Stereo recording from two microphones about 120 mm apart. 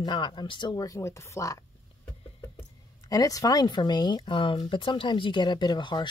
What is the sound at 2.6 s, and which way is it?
Speech, 30° left (ahead or behind).